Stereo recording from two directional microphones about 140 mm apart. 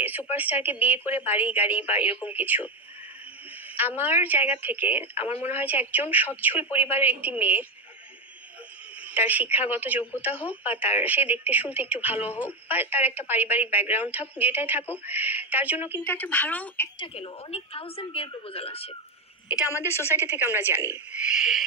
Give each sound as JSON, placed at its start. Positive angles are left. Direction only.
{"t": 0.3, "sound": "a woman's voice", "side_deg": -15}
{"t": 3.7, "sound": "a woman's voice", "side_deg": -15}
{"t": 5.1, "sound": "a woman's voice", "side_deg": 45}
{"t": 5.5, "sound": "a woman's voice", "side_deg": -15}
{"t": 9.1, "sound": "a woman's voice", "side_deg": -10}
{"t": 16.1, "sound": "speech", "side_deg": 10}
{"t": 17.0, "sound": "a woman's voice", "side_deg": 45}
{"t": 19.4, "sound": "a woman's voice", "side_deg": 25}
{"t": 20.2, "sound": "a woman's voice", "side_deg": -15}